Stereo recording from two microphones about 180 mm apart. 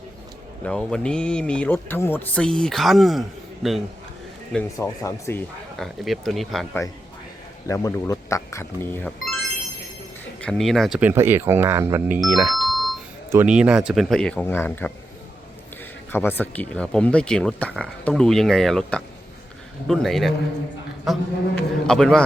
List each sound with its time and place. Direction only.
0.6 s speech: 5° left (ahead or behind)
4.5 s speech: 15° left (ahead or behind)
5.7 s speech: centre (ahead or behind)
7.7 s speech: 20° left (ahead or behind)
10.4 s speech: centre (ahead or behind)
11.1 s speech: 15° right (ahead or behind); by 14.9 s 10° left (ahead or behind)
16.1 s speech: 10° left (ahead or behind)